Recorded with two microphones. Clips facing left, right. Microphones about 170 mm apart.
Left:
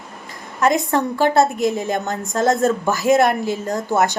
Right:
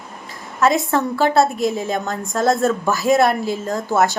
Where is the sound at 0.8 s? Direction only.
15° left (ahead or behind).